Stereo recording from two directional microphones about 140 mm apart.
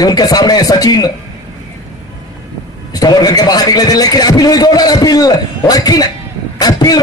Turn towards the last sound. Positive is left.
turn(degrees=30)  # may be behind; listen again after turning